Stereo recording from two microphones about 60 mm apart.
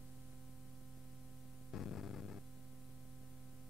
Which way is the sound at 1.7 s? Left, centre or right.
Centre.